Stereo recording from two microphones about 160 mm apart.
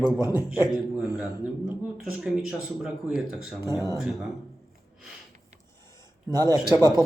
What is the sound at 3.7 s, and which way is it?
Speech, 20° right (ahead or behind).